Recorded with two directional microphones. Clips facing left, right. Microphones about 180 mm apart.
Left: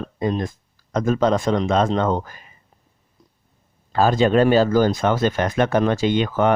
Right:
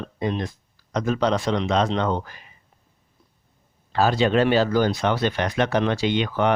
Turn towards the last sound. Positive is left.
turn(degrees=45)  # may be behind; listen again after turning